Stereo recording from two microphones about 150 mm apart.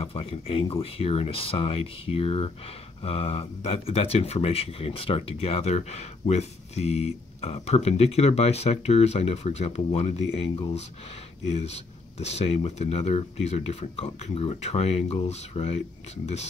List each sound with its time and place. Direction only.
0.0 s speech: 40° left (ahead or behind)
11.4 s speech: 45° left (ahead or behind)